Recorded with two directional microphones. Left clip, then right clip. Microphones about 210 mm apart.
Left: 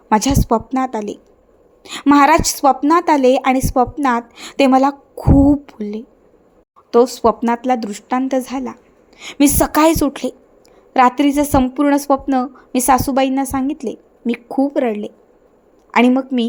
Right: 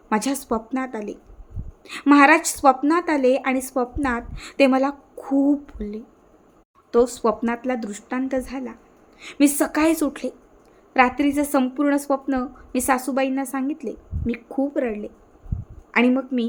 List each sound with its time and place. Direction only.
0.1 s a woman's voice: 25° left (ahead or behind)